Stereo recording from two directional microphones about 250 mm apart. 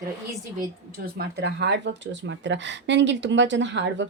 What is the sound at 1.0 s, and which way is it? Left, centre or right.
Speech, right.